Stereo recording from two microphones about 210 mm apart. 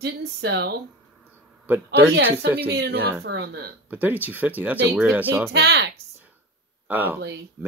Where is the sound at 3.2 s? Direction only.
55° right (ahead or behind).